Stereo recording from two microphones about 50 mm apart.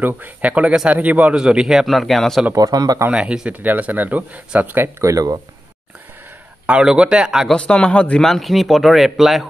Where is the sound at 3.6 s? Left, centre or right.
Right.